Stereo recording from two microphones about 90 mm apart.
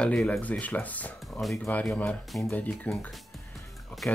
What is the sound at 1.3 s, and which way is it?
Speech, centre (ahead or behind).